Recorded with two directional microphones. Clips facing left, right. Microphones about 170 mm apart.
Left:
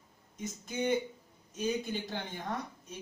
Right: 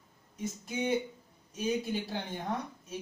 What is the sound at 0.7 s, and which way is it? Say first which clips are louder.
Speech: left 1 dB; 10° right (ahead or behind).